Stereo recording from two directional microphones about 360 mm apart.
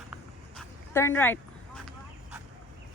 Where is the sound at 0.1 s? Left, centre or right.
Centre.